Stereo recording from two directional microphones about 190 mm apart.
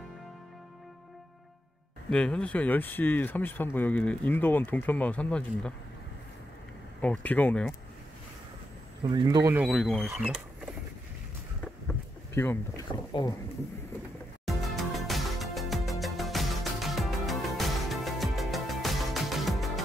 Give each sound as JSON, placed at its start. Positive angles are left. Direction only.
{"t": 2.0, "sound": "speech", "side_deg": 5}
{"t": 7.0, "sound": "speech", "side_deg": 10}
{"t": 9.0, "sound": "speech", "side_deg": -25}
{"t": 9.5, "sound": "speech", "side_deg": -5}
{"t": 12.4, "sound": "speech", "side_deg": 15}
{"t": 12.8, "sound": "speech", "side_deg": 25}
{"t": 14.4, "sound": "music", "side_deg": 0}